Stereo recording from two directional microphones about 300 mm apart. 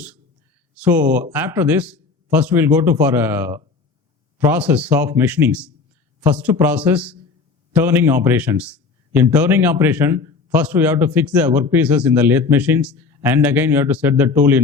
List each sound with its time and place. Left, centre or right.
0.8 s a man's voice: centre